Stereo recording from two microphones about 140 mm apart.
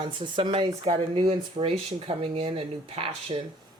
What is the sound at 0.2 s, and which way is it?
Speech, 35° right (ahead or behind).